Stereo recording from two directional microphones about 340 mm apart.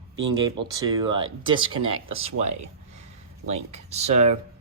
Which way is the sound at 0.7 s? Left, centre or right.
Centre.